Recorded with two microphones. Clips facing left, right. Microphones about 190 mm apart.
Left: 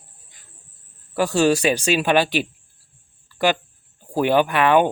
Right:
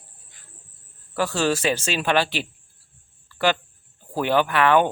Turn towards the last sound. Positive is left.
turn(degrees=15)  # may be behind; listen again after turning